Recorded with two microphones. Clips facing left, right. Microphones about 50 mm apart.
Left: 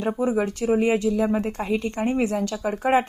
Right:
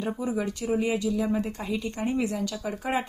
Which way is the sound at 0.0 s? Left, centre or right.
Left.